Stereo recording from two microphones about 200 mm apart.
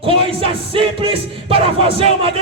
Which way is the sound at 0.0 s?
25° right (ahead or behind).